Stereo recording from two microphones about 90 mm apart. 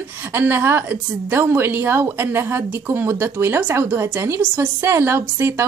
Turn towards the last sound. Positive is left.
turn(degrees=-30)  # may be behind; listen again after turning